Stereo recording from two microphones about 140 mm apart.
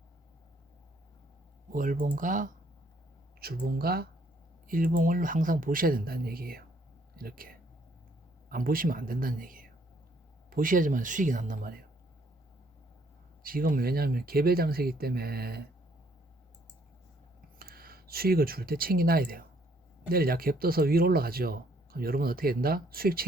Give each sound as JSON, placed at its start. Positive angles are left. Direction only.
{"t": 1.7, "sound": "speech", "side_deg": -70}
{"t": 3.4, "sound": "speech", "side_deg": -90}
{"t": 4.7, "sound": "speech", "side_deg": -75}
{"t": 13.4, "sound": "speech", "side_deg": -90}
{"t": 17.6, "sound": "speech", "side_deg": -90}